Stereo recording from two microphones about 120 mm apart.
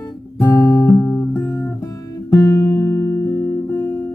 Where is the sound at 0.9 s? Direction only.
20° left (ahead or behind).